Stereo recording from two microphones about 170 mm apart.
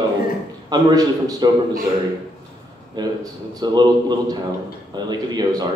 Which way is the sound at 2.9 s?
25° right (ahead or behind).